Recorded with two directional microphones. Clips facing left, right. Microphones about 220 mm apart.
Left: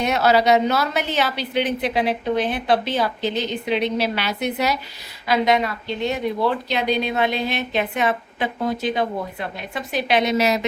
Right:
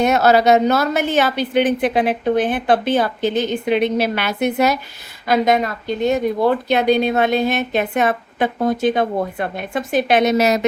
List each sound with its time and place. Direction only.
0.0 s speech: 45° right (ahead or behind)